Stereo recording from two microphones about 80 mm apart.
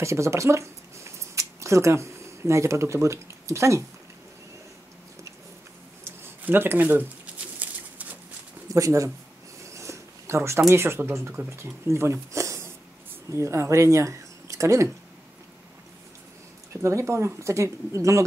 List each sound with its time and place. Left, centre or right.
0.0 s speech: right
6.0 s bird: right
8.6 s speech: right
9.6 s a sound: right
10.7 s speech: right
16.7 s speech: right